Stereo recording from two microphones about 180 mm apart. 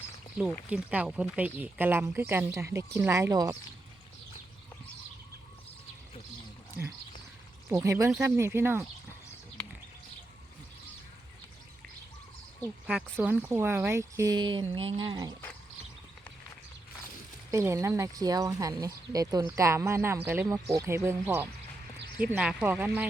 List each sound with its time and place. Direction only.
0.3 s speech: 5° right (ahead or behind)
7.7 s speech: 15° right (ahead or behind)
12.9 s speech: 5° right (ahead or behind); by 15.3 s 25° right (ahead or behind)
17.5 s speech: 15° right (ahead or behind)